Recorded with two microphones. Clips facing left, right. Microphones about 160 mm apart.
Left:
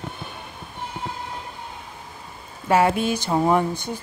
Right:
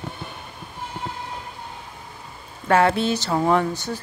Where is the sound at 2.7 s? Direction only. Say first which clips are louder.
Right 1 dB; 10° left (ahead or behind).